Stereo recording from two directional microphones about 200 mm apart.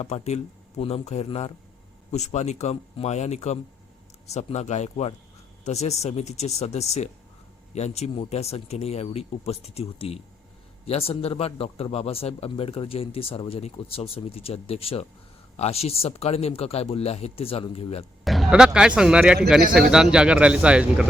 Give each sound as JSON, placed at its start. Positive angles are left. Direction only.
{"t": 0.0, "sound": "a man's voice", "side_deg": 35}
{"t": 18.3, "sound": "speech", "side_deg": 0}